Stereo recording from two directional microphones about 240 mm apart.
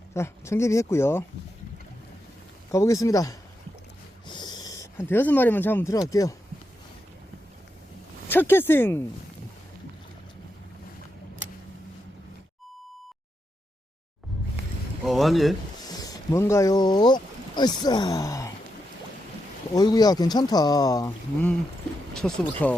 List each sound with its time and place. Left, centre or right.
0.1 s speech: centre
2.7 s speech: centre
8.3 s speech: centre
15.0 s speech: centre
16.0 s speech: centre
19.7 s speech: centre
22.1 s speech: centre